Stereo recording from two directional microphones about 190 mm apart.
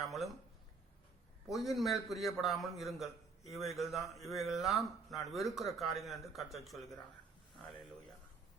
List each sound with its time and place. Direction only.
0.0 s speech: centre (ahead or behind)
1.5 s a man's voice: centre (ahead or behind)